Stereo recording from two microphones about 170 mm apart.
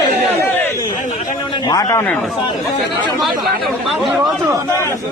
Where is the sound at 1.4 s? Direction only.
30° left (ahead or behind).